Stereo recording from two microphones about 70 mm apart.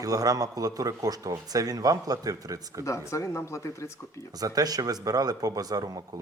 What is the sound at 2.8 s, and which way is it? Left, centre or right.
Speech, left.